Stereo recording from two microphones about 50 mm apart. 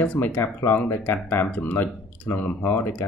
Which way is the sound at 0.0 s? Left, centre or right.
Left.